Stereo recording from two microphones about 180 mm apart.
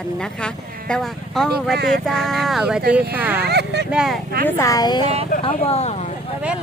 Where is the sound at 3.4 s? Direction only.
65° right (ahead or behind).